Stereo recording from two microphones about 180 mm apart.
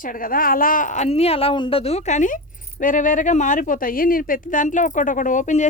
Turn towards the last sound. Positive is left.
turn(degrees=45)  # may be behind; listen again after turning